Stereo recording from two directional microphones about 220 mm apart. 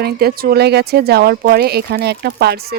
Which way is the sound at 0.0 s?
45° right (ahead or behind).